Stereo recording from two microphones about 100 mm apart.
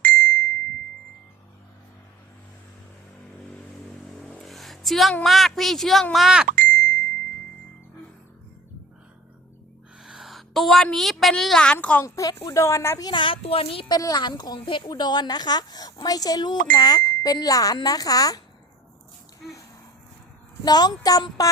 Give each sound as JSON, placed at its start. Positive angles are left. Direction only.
{"t": 0.1, "sound": "ding", "side_deg": 20}
{"t": 4.3, "sound": "a sound", "side_deg": 5}
{"t": 5.2, "sound": "speech", "side_deg": 0}
{"t": 6.7, "sound": "ding", "side_deg": 20}
{"t": 10.0, "sound": "a sound", "side_deg": -5}
{"t": 10.9, "sound": "speech", "side_deg": 0}
{"t": 12.0, "sound": "speech", "side_deg": 30}
{"t": 13.1, "sound": "speech", "side_deg": 55}
{"t": 13.8, "sound": "a woman's voice", "side_deg": 40}
{"t": 20.7, "sound": "speech", "side_deg": 40}